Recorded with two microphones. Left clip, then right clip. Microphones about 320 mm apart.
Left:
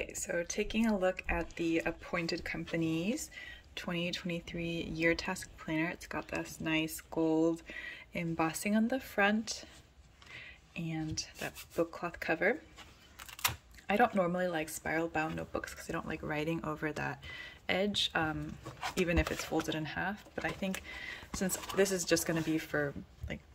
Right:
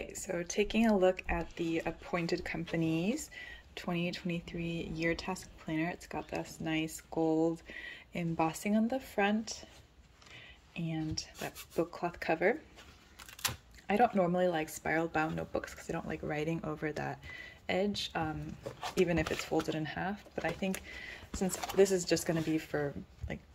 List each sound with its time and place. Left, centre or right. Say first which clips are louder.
0.0 s speech: left 2 dB; centre
10.7 s speech: right 1 dB; centre
13.8 s speech: right 1 dB; centre